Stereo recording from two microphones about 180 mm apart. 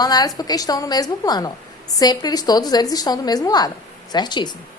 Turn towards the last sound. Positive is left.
turn(degrees=25)  # may be behind; listen again after turning